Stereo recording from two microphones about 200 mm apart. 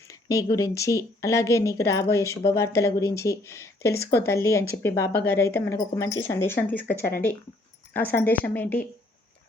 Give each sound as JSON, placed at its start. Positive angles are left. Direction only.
{"t": 0.1, "sound": "a sound", "side_deg": 15}
{"t": 0.5, "sound": "speech", "side_deg": 15}
{"t": 8.1, "sound": "speech", "side_deg": 10}